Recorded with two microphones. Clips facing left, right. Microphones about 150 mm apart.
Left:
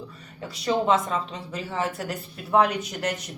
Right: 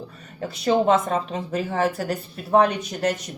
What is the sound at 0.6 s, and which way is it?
Speech, 45° right (ahead or behind).